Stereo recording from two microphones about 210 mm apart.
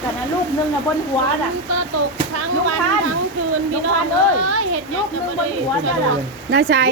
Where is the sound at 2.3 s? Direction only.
90° right.